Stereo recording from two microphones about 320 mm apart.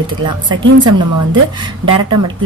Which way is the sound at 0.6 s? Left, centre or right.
Right.